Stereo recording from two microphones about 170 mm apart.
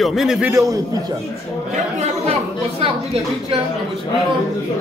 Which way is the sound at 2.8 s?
35° right (ahead or behind).